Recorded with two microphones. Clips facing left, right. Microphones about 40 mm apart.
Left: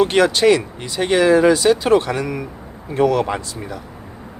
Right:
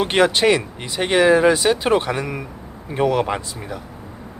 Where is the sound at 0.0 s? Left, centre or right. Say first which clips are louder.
Left 2 dB; right.